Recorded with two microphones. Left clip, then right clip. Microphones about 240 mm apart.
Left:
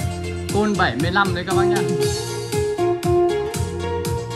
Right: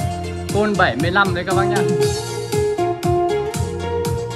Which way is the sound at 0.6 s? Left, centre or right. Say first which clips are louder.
Right 3 dB; centre.